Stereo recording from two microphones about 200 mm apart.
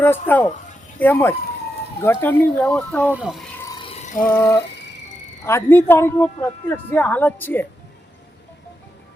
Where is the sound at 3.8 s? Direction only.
35° left (ahead or behind).